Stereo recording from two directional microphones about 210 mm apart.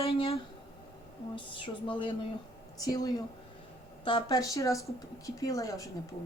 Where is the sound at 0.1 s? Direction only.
30° left (ahead or behind).